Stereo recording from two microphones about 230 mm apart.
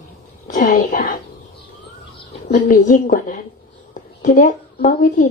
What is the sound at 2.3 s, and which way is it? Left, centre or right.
A woman's voice, left.